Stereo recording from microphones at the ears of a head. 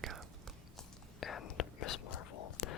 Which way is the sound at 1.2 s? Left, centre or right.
Left.